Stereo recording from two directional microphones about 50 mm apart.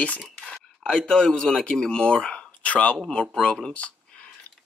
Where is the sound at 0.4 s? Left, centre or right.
Left.